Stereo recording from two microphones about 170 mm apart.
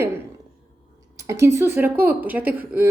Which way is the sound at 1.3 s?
15° right (ahead or behind).